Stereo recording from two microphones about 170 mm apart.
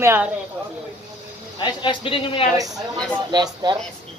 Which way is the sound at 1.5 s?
30° left (ahead or behind).